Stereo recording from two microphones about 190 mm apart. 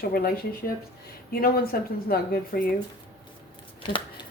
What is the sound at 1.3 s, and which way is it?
Speech, 50° left (ahead or behind).